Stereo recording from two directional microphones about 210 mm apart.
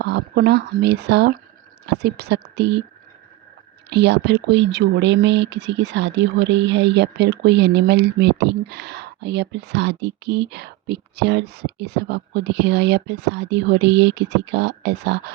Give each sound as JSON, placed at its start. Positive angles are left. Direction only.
{"t": 0.0, "sound": "a woman's voice", "side_deg": -55}
{"t": 3.8, "sound": "speech", "side_deg": -55}